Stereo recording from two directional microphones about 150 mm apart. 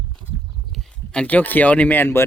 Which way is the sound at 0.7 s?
5° left (ahead or behind).